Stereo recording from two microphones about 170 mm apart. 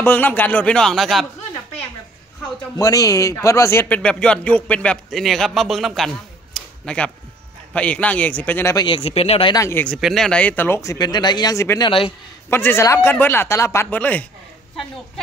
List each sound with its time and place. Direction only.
0.0 s a man's voice: 10° left (ahead or behind)
2.8 s a man's voice: 20° left (ahead or behind)
8.7 s speech: 30° left (ahead or behind)
9.6 s a man's voice: 15° left (ahead or behind)
9.9 s a man's voice: centre (ahead or behind)